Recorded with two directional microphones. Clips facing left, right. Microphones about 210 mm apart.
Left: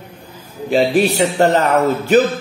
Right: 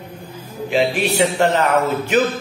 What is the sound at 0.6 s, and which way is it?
A man's voice, 35° left (ahead or behind).